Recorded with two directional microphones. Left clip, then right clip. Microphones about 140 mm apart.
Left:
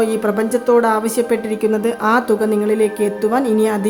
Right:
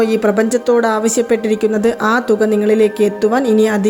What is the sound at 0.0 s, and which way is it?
A woman's voice, 20° right (ahead or behind).